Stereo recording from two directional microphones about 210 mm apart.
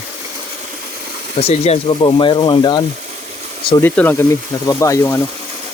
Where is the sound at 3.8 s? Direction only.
10° left (ahead or behind).